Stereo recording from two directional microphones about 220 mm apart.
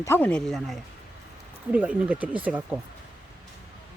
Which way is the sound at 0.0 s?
10° left (ahead or behind).